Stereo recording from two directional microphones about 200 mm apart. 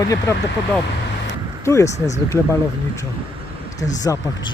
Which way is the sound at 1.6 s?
15° left (ahead or behind).